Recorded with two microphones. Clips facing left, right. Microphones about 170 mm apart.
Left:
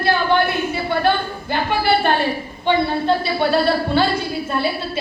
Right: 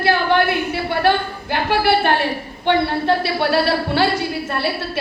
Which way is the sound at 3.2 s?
70° right (ahead or behind).